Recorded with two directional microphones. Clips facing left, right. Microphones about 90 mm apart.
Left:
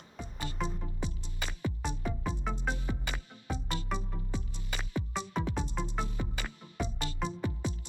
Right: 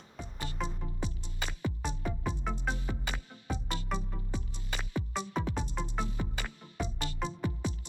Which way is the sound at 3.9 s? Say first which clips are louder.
Right 1 dB; centre (ahead or behind).